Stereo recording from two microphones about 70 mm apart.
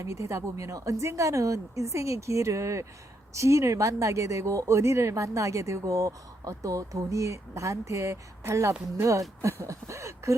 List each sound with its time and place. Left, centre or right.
0.0 s speech: right